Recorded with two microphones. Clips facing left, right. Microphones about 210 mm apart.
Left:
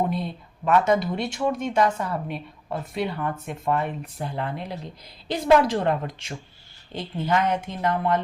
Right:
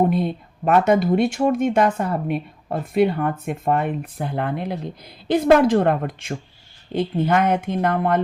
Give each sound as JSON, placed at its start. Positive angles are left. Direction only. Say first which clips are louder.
{"t": 0.1, "sound": "speech", "louder": "right 7 dB", "side_deg": -55}